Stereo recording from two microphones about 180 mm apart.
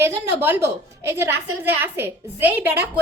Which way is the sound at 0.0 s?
10° right (ahead or behind).